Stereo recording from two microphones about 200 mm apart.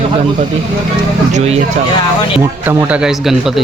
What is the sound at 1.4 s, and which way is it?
Speech, 30° right (ahead or behind).